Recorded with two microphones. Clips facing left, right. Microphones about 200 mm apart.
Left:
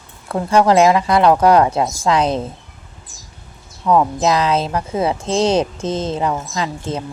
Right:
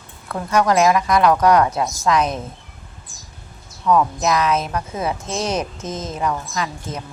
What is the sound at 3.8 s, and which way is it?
Speech, 30° left (ahead or behind).